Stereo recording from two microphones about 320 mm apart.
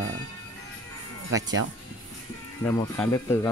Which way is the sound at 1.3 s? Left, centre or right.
Right.